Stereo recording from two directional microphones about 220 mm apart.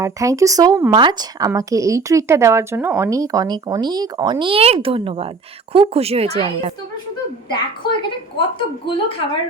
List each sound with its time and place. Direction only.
0.0 s speech: 15° right (ahead or behind)
7.5 s a woman's voice: 20° left (ahead or behind)